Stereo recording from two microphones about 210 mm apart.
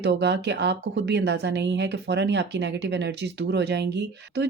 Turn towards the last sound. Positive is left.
turn(degrees=-55)  # may be behind; listen again after turning